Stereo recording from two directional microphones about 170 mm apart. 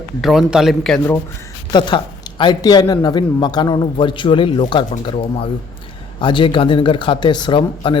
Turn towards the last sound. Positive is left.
turn(degrees=30)  # may be behind; listen again after turning